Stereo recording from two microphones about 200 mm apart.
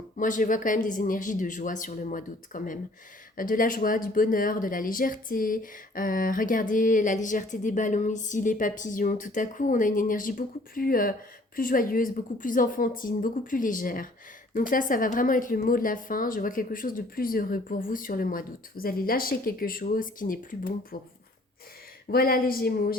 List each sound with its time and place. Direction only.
0.2 s speech: 40° left (ahead or behind)
22.1 s speech: 45° left (ahead or behind)